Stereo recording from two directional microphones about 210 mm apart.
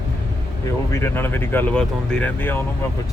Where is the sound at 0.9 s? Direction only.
10° left (ahead or behind).